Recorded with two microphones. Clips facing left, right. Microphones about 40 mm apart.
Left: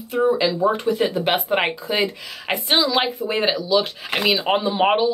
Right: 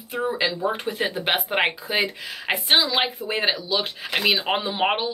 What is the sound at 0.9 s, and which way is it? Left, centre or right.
Speech, centre.